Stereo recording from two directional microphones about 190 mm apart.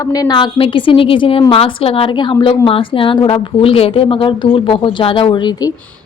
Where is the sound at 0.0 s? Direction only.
20° left (ahead or behind).